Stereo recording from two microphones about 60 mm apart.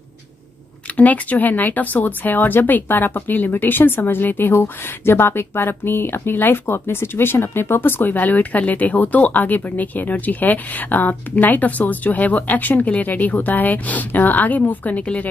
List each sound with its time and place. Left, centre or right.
0.9 s speech: left